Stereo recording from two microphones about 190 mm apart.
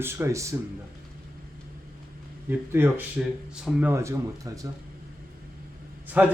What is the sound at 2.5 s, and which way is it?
Speech, 10° right (ahead or behind).